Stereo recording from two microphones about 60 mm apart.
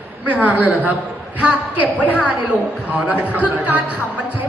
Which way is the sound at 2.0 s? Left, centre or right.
Right.